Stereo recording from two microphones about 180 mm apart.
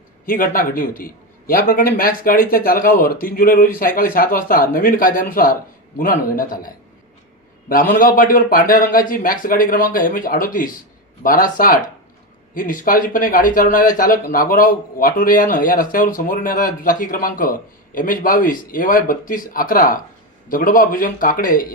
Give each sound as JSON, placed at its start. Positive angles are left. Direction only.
{"t": 0.3, "sound": "a man's voice", "side_deg": 50}
{"t": 7.7, "sound": "a man's voice", "side_deg": 50}